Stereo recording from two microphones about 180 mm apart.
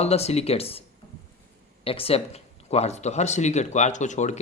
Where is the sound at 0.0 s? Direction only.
35° left (ahead or behind).